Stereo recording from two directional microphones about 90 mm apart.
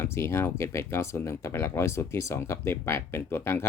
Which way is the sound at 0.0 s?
30° left (ahead or behind).